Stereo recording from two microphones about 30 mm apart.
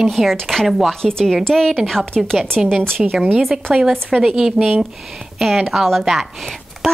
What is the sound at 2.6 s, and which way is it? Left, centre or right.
A woman's voice, centre.